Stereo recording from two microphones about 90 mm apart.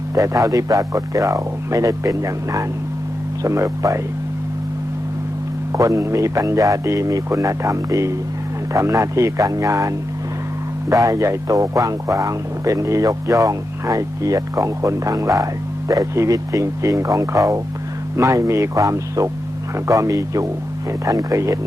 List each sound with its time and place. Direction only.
0.1 s speech: 40° right (ahead or behind)
5.7 s speech: 35° right (ahead or behind)